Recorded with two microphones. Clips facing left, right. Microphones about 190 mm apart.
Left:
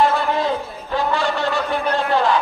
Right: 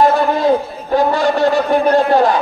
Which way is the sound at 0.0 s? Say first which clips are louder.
Right 5 dB; 45° right (ahead or behind).